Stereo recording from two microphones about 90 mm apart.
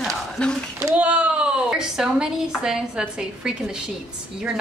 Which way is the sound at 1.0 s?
15° right (ahead or behind).